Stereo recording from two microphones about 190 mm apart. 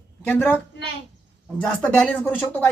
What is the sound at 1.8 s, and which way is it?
Speech, 5° left (ahead or behind).